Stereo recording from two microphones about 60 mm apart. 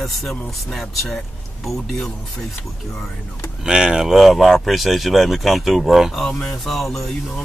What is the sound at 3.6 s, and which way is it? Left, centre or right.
Speech, centre.